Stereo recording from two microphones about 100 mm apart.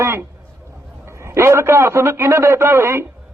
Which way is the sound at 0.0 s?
25° right (ahead or behind).